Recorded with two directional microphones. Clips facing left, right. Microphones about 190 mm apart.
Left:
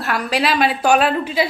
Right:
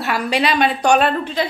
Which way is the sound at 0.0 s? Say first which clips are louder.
Right 1 dB; centre (ahead or behind).